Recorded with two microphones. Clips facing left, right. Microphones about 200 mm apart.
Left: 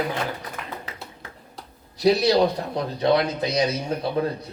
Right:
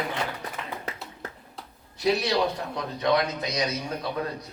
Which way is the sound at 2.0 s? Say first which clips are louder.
Left 6 dB; 35° left (ahead or behind).